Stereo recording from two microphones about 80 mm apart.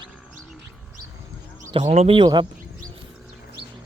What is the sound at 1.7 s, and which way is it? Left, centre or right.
Speech, right.